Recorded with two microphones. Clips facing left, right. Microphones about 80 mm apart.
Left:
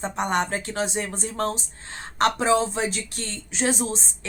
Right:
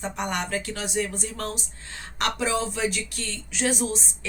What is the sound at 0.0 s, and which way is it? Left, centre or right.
Speech, left.